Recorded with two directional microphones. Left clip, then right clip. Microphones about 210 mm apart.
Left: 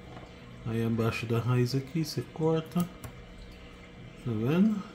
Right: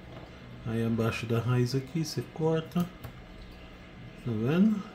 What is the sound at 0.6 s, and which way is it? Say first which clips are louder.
Speech: even; 5° left (ahead or behind).